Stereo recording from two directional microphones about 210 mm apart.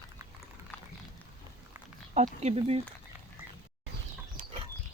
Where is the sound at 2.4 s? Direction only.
30° right (ahead or behind).